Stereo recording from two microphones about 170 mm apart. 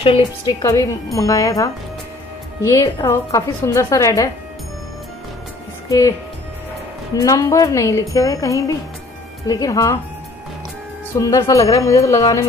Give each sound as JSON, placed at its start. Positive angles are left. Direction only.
{"t": 0.6, "sound": "a woman's voice", "side_deg": 15}
{"t": 5.9, "sound": "a woman's voice", "side_deg": 20}
{"t": 7.2, "sound": "a woman's voice", "side_deg": 20}
{"t": 11.1, "sound": "a woman's voice", "side_deg": 20}